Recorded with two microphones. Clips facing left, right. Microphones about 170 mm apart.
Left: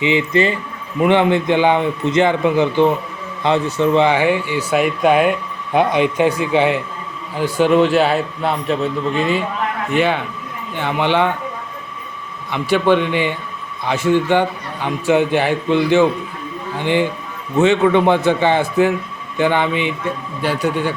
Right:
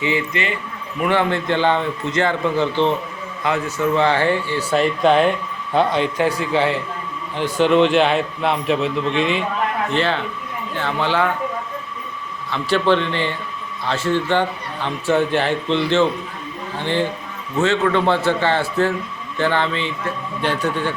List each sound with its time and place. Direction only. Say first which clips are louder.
0.0 s a man's voice: left 6 dB; 20° left (ahead or behind)
3.4 s a man's voice: left 4 dB; 25° left (ahead or behind)
12.7 s a man's voice: left 3 dB; 15° left (ahead or behind)